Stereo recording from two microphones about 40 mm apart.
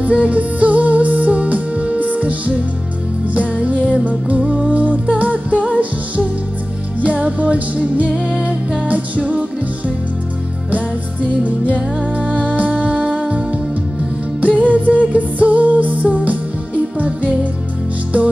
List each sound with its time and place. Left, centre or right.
0.0 s music: right
8.1 s music: right
8.8 s music: right
11.4 s music: right
14.4 s music: right